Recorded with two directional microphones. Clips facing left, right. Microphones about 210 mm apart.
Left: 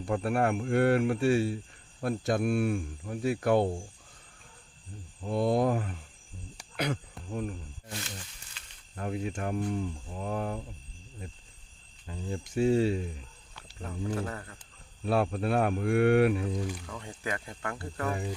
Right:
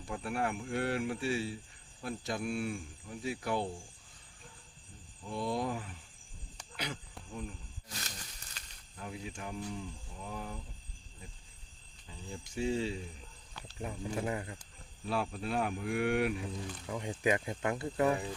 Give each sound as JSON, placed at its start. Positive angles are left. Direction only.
{"t": 0.1, "sound": "speech", "side_deg": 60}
{"t": 5.2, "sound": "speech", "side_deg": 60}
{"t": 8.6, "sound": "a sound", "side_deg": -40}
{"t": 9.0, "sound": "speech", "side_deg": 60}
{"t": 12.0, "sound": "speech", "side_deg": 60}
{"t": 13.8, "sound": "speech", "side_deg": -15}
{"t": 15.0, "sound": "speech", "side_deg": 60}
{"t": 16.9, "sound": "speech", "side_deg": -15}